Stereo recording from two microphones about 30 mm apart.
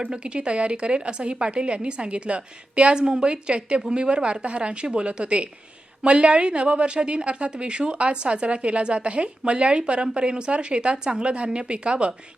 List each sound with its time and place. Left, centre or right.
0.1 s a woman's voice: right